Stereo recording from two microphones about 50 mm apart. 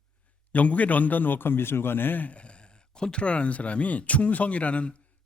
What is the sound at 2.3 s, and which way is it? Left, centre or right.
Speech, left.